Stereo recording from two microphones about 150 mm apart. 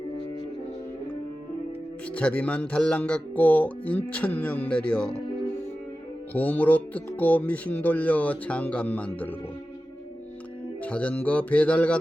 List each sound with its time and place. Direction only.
2.1 s speech: 10° left (ahead or behind)
6.3 s speech: 10° left (ahead or behind)
10.8 s speech: 10° left (ahead or behind)